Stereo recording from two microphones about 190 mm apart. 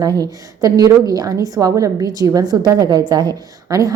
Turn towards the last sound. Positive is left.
turn(degrees=-20)  # may be behind; listen again after turning